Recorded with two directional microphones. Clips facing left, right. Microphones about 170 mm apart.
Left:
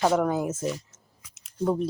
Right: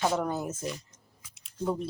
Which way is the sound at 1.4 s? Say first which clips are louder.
Left 5 dB; 45° left (ahead or behind).